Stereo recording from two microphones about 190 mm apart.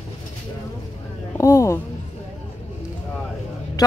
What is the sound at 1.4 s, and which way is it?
Speech, 15° left (ahead or behind).